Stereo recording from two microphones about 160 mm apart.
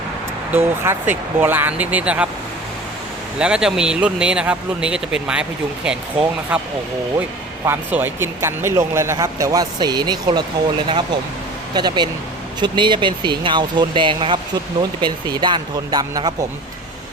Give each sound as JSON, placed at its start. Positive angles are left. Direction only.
{"t": 0.5, "sound": "speech", "side_deg": -10}
{"t": 3.3, "sound": "speech", "side_deg": -5}